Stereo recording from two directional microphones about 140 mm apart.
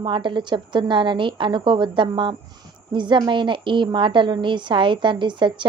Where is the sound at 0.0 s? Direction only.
35° right (ahead or behind).